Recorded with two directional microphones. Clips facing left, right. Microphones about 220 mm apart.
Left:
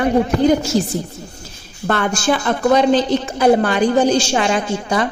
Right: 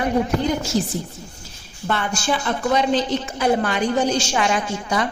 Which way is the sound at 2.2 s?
65° left (ahead or behind).